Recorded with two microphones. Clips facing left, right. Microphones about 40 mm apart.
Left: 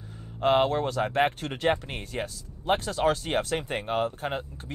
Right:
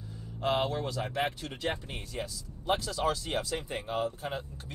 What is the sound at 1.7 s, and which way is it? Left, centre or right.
Speech, left.